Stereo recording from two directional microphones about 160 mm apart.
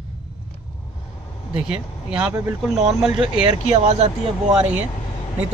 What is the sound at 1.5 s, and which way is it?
Speech, 5° right (ahead or behind).